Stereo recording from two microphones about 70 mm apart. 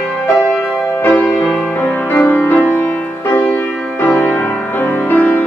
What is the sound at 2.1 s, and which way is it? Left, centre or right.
Music, left.